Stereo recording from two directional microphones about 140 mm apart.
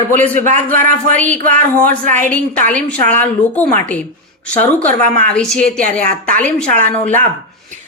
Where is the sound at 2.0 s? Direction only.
65° right (ahead or behind).